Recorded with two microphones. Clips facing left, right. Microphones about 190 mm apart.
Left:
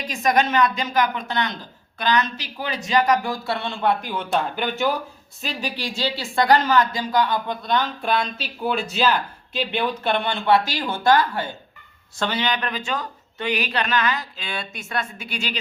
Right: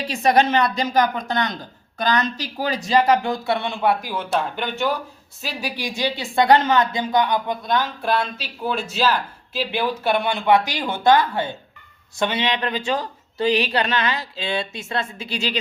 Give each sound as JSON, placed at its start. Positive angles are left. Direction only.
{"t": 0.1, "sound": "speech", "side_deg": -30}
{"t": 5.4, "sound": "speech", "side_deg": -10}